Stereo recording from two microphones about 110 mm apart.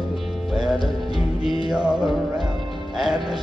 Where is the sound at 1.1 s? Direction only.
60° left (ahead or behind).